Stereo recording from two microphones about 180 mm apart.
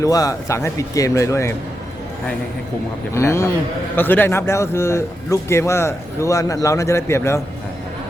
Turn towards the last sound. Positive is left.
turn(degrees=15)  # may be behind; listen again after turning